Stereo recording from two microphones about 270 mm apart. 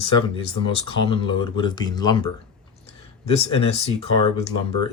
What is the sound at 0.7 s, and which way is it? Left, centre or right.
Speech, centre.